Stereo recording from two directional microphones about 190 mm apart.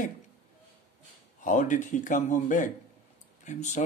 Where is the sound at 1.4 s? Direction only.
40° left (ahead or behind).